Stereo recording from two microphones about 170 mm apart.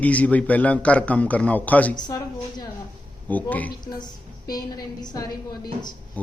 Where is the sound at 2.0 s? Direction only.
25° left (ahead or behind).